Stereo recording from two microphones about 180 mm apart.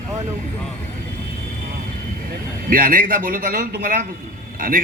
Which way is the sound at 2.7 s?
50° right (ahead or behind).